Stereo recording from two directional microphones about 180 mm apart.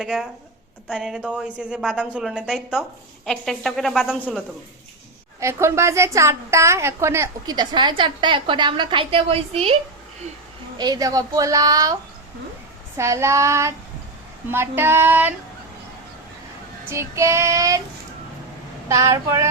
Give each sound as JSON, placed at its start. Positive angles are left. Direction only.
{"t": 0.0, "sound": "a woman's voice", "side_deg": -5}
{"t": 5.4, "sound": "a woman's voice", "side_deg": -15}
{"t": 10.8, "sound": "a woman's voice", "side_deg": -20}
{"t": 13.0, "sound": "child singing", "side_deg": -15}
{"t": 16.9, "sound": "child singing", "side_deg": -15}
{"t": 18.9, "sound": "child singing", "side_deg": -15}